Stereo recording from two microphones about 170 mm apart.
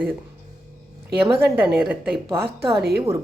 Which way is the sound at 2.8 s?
70° right (ahead or behind).